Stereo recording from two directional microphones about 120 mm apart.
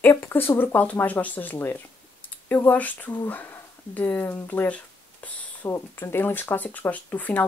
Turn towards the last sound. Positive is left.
turn(degrees=15)  # may be behind; listen again after turning